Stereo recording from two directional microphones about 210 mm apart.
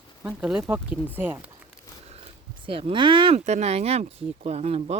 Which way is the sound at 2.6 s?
25° right (ahead or behind).